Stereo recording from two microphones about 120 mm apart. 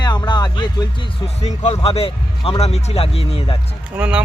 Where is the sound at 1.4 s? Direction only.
70° left (ahead or behind).